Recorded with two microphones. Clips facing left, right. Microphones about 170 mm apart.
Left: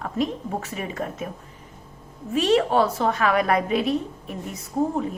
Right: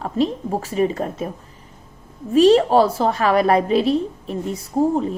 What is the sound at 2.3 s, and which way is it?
A woman's voice, 35° right (ahead or behind).